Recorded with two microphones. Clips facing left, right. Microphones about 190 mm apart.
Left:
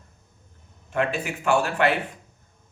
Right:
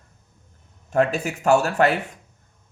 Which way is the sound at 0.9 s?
40° right (ahead or behind).